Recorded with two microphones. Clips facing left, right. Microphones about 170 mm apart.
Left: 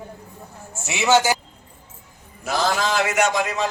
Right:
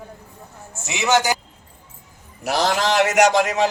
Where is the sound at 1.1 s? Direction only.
15° right (ahead or behind).